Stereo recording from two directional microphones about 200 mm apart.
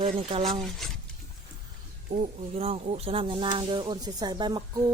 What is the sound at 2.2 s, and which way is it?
Speech, 30° right (ahead or behind).